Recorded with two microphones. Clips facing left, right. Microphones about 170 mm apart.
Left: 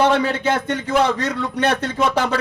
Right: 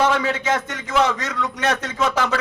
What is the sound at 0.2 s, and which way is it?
A man's voice, 30° left (ahead or behind).